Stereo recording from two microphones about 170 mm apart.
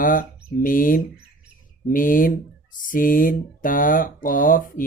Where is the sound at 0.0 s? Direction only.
55° left (ahead or behind).